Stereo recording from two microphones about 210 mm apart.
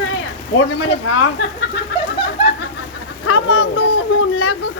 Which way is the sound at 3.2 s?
75° left (ahead or behind).